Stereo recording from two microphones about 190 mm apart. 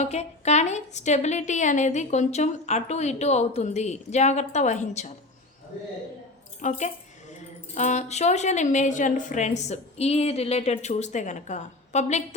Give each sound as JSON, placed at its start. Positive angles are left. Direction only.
{"t": 0.0, "sound": "a woman's voice", "side_deg": 35}
{"t": 6.6, "sound": "a woman's voice", "side_deg": 40}